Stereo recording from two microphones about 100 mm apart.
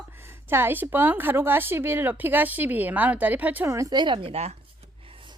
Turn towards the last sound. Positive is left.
turn(degrees=-90)